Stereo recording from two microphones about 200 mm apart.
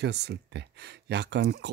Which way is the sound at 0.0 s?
55° right (ahead or behind).